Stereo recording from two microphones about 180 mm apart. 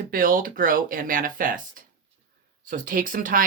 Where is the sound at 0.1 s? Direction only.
50° right (ahead or behind).